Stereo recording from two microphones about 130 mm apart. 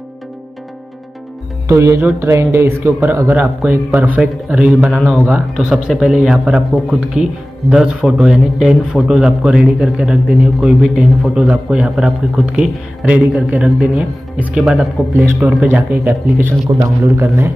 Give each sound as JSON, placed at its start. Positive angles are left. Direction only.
{"t": 1.7, "sound": "a man's voice", "side_deg": -20}